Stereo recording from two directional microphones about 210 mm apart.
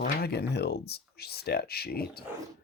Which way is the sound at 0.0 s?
50° left (ahead or behind).